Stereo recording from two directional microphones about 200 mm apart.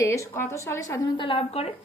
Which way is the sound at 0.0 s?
15° left (ahead or behind).